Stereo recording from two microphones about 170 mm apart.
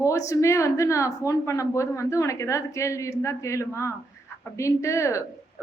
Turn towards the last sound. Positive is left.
turn(degrees=15)  # may be behind; listen again after turning